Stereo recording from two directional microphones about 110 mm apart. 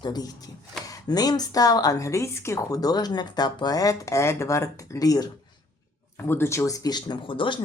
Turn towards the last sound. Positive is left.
turn(degrees=50)  # may be behind; listen again after turning